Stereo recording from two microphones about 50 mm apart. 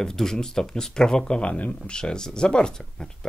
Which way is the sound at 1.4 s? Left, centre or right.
Left.